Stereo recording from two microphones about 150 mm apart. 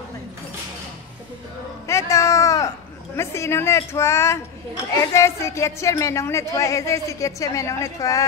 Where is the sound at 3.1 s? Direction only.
20° left (ahead or behind).